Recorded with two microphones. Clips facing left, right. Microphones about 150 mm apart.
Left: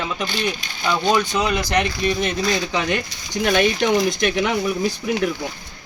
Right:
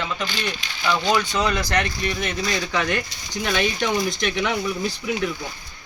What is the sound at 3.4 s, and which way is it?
Speech, 45° left (ahead or behind).